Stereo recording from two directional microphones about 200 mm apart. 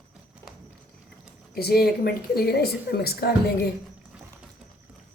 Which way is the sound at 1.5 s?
50° left (ahead or behind).